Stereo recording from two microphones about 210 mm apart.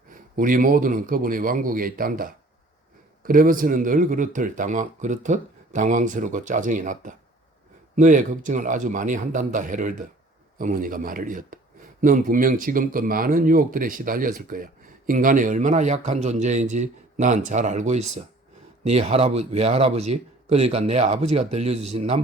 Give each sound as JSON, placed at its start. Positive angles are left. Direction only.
{"t": 0.1, "sound": "a man's voice", "side_deg": -40}